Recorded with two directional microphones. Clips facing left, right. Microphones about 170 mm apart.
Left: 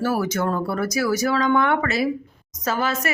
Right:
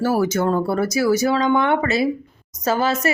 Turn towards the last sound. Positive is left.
turn(degrees=-30)  # may be behind; listen again after turning